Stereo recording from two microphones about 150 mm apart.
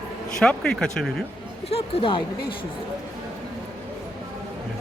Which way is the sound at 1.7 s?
35° left (ahead or behind).